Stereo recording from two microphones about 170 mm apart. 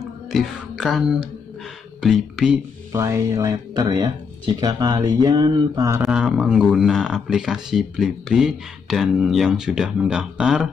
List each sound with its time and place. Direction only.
0.0 s music: centre (ahead or behind)
2.0 s speech: centre (ahead or behind)
2.9 s speech: 20° right (ahead or behind)
6.0 s speech: 5° right (ahead or behind)